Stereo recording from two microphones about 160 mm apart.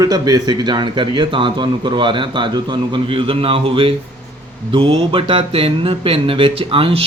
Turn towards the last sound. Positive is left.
turn(degrees=-35)  # may be behind; listen again after turning